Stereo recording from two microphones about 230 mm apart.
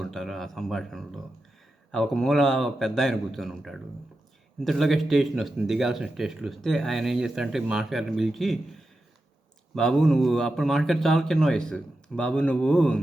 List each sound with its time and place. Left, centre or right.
0.0 s speech: centre